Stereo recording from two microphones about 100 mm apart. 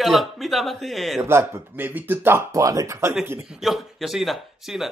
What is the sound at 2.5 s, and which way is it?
Speech, 35° right (ahead or behind).